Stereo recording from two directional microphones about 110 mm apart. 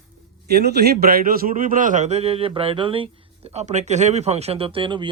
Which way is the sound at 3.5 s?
90° right.